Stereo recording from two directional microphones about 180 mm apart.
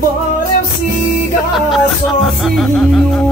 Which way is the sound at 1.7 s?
Centre (ahead or behind).